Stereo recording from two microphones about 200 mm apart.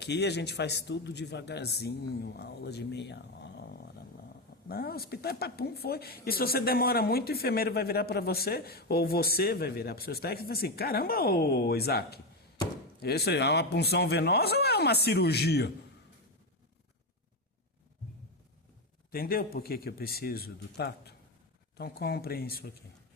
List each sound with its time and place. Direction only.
0.0 s a man's voice: 55° left (ahead or behind)
4.7 s speech: 50° left (ahead or behind)
19.1 s speech: 50° left (ahead or behind)